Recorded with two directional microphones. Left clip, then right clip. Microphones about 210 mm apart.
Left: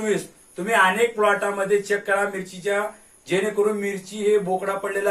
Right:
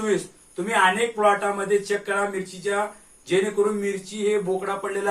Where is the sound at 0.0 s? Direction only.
15° right (ahead or behind).